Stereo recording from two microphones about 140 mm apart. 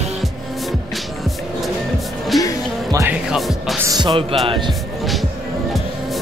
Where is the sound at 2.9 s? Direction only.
20° right (ahead or behind).